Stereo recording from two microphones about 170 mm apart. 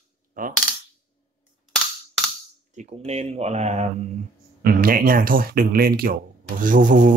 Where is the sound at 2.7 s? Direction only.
35° right (ahead or behind).